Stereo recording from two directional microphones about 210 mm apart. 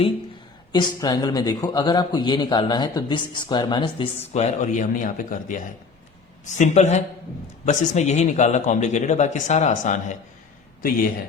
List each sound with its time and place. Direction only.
0.7 s speech: 20° left (ahead or behind); by 10.0 s 35° left (ahead or behind)